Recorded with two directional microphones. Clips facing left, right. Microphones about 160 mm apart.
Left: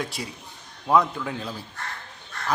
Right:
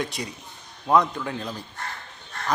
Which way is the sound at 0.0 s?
Centre (ahead or behind).